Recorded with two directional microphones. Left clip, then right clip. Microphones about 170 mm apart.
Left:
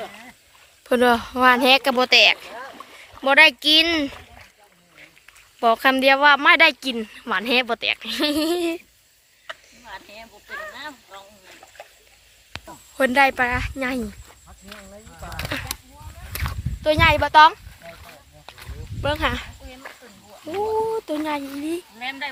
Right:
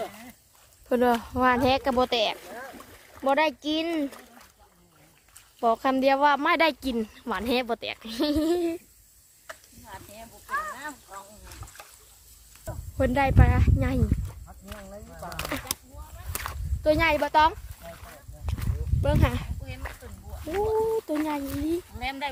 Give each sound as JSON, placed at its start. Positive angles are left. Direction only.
{"t": 0.9, "sound": "speech", "side_deg": -5}
{"t": 2.5, "sound": "rowboat", "side_deg": -90}
{"t": 3.2, "sound": "speech", "side_deg": -10}
{"t": 5.5, "sound": "speech", "side_deg": -5}
{"t": 9.5, "sound": "a sound", "side_deg": -20}
{"t": 9.9, "sound": "a sound", "side_deg": -35}
{"t": 13.0, "sound": "speech", "side_deg": 0}
{"t": 15.2, "sound": "a sound", "side_deg": -10}
{"t": 16.8, "sound": "speech", "side_deg": -15}
{"t": 17.1, "sound": "speech", "side_deg": 0}
{"t": 19.0, "sound": "speech", "side_deg": 0}
{"t": 21.2, "sound": "speech", "side_deg": 5}
{"t": 21.9, "sound": "speech", "side_deg": -45}